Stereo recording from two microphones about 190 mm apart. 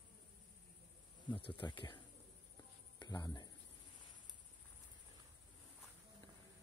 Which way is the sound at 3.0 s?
20° left (ahead or behind).